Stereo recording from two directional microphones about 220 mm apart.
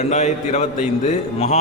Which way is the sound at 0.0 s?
30° left (ahead or behind).